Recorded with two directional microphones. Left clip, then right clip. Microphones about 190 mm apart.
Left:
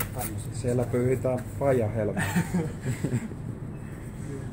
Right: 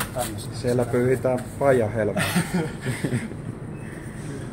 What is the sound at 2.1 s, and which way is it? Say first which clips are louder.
Speech: right 5 dB; 25° right (ahead or behind).